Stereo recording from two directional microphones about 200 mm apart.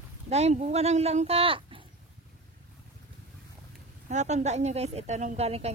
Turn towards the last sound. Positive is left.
turn(degrees=-30)  # may be behind; listen again after turning